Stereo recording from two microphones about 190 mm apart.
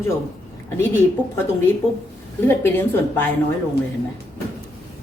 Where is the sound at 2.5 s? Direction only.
10° left (ahead or behind).